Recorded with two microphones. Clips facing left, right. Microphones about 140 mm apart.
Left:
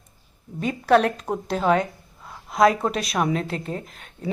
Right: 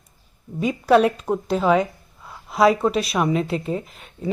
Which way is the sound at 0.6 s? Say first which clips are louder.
Right 2 dB; 5° right (ahead or behind).